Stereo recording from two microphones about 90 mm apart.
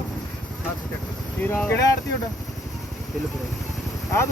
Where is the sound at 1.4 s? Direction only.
20° left (ahead or behind).